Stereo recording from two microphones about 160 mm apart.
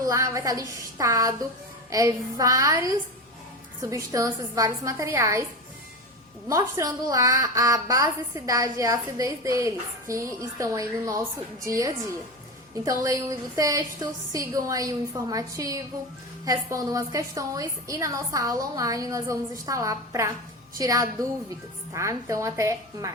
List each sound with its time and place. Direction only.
0.0 s a woman's voice: 20° right (ahead or behind)
6.5 s a woman's voice: 20° right (ahead or behind)